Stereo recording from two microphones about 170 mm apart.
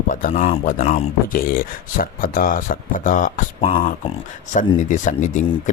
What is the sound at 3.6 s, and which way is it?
Speech, 35° left (ahead or behind).